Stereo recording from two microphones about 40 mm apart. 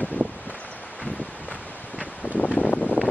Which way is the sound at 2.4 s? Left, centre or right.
Left.